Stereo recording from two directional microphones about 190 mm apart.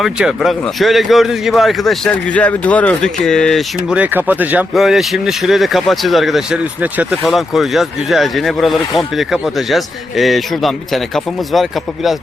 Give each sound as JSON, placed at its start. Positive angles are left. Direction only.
{"t": 0.0, "sound": "a man's voice", "side_deg": 0}